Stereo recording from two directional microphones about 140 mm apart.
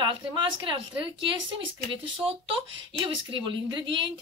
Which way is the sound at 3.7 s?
35° right (ahead or behind).